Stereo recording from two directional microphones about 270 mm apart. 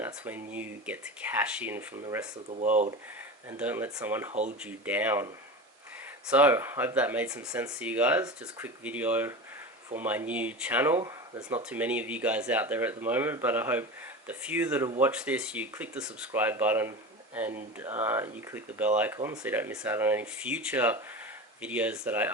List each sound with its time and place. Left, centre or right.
0.0 s speech: centre
2.5 s speech: right
3.6 s speech: centre
4.3 s speech: right
4.6 s speech: centre